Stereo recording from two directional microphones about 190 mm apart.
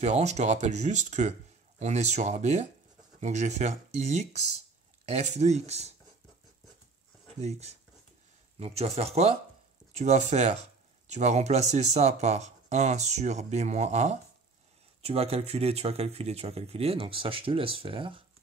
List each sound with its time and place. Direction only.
0.0 s speech: 35° right (ahead or behind)
8.5 s speech: 35° right (ahead or behind)